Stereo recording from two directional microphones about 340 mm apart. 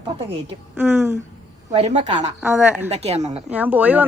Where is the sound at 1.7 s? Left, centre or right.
Centre.